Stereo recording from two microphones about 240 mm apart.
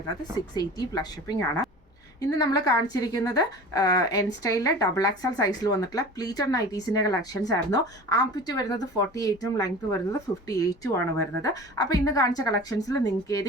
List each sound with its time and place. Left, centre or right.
0.5 s speech: centre